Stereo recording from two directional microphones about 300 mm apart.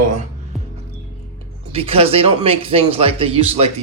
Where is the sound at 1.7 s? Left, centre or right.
Centre.